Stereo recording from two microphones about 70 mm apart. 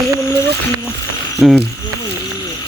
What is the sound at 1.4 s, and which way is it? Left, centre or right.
Speech, centre.